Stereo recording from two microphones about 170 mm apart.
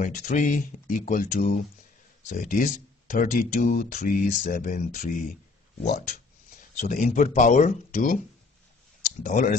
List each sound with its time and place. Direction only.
0.0 s speech: 45° left (ahead or behind)
9.2 s speech: 55° left (ahead or behind)